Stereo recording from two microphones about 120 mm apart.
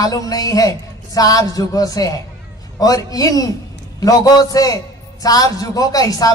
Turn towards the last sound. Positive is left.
turn(degrees=30)  # may be behind; listen again after turning